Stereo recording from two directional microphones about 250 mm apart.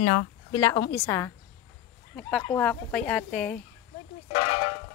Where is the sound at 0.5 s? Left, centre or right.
Centre.